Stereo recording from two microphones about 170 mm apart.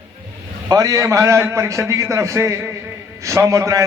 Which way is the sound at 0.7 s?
20° right (ahead or behind).